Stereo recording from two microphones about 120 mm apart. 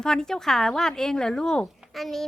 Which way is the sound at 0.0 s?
5° left (ahead or behind).